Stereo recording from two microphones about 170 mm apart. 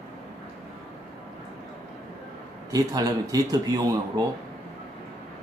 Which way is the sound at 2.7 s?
20° right (ahead or behind).